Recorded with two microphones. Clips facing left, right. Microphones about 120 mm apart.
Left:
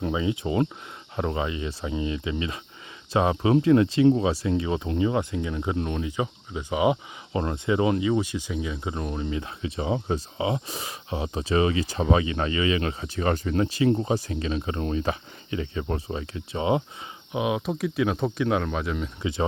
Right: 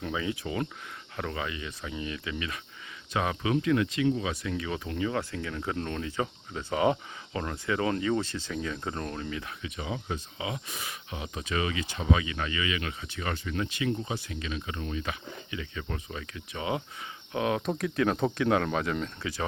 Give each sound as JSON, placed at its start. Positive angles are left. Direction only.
{"t": 0.0, "sound": "speech", "side_deg": 20}
{"t": 7.3, "sound": "speech", "side_deg": 25}
{"t": 17.3, "sound": "speech", "side_deg": 15}
{"t": 19.2, "sound": "speech", "side_deg": 25}